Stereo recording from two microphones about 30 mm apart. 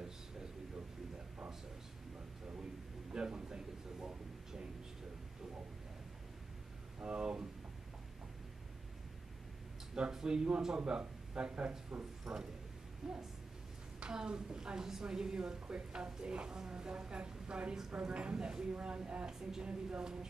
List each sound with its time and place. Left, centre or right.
3.1 s a sound: right
7.0 s speech: right
9.9 s a woman's voice: right
12.0 s speech: right
14.1 s a woman's voice: right